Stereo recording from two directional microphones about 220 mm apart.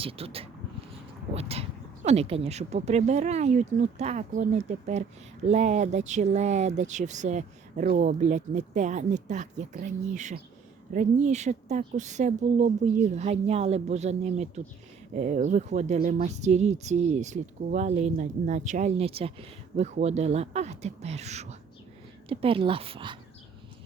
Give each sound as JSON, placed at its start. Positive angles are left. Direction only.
{"t": 0.0, "sound": "speech", "side_deg": -25}